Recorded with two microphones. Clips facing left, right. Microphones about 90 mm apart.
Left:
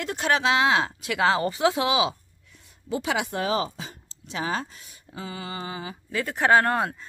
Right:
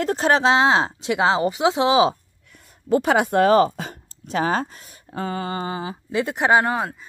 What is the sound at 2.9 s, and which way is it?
Speech, 45° right (ahead or behind).